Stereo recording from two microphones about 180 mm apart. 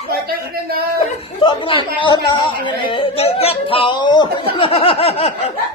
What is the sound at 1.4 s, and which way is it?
Speech, 30° left (ahead or behind).